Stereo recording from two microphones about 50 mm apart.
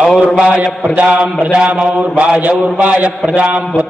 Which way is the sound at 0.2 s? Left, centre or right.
Right.